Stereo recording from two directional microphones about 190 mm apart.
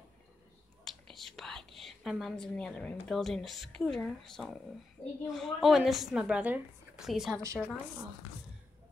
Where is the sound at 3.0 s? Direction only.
Centre (ahead or behind).